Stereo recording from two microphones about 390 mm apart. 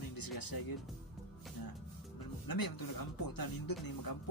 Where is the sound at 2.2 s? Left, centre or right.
Left.